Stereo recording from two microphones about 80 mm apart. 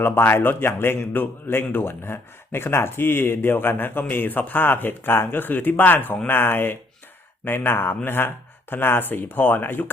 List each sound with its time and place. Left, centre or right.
0.0 s speech: left